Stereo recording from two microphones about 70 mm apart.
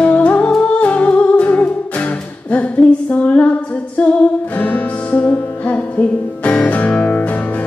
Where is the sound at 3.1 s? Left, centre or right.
Centre.